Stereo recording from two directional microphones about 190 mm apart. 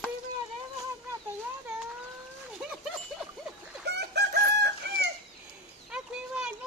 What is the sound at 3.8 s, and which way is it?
Chicken, 60° right (ahead or behind).